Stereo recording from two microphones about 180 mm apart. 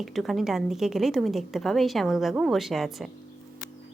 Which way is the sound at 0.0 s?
Centre (ahead or behind).